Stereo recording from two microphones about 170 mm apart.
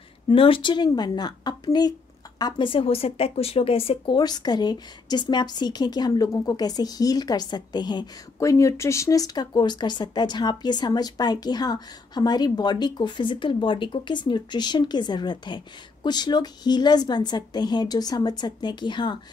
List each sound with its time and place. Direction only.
0.3 s speech: 30° left (ahead or behind)